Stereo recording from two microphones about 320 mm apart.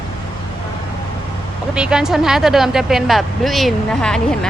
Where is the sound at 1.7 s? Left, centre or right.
Centre.